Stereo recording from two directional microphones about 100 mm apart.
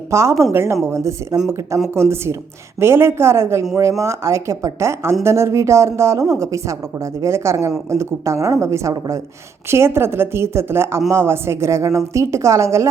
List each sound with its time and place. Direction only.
0.1 s a woman's voice: 30° right (ahead or behind)